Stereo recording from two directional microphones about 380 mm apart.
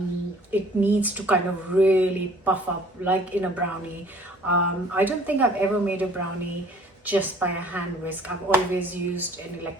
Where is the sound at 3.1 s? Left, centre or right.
Centre.